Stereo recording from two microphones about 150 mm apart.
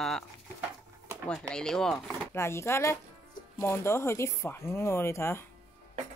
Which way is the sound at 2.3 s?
15° left (ahead or behind).